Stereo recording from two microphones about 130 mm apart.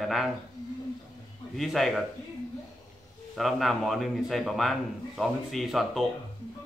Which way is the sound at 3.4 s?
Centre (ahead or behind).